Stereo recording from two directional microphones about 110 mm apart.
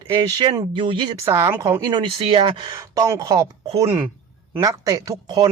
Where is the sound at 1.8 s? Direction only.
40° right (ahead or behind).